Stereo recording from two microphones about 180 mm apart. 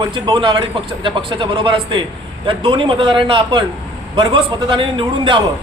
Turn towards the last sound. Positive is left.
turn(degrees=-25)  # may be behind; listen again after turning